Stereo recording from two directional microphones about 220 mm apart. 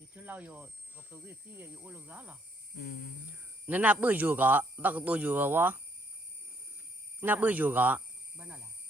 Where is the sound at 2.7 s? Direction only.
40° left (ahead or behind).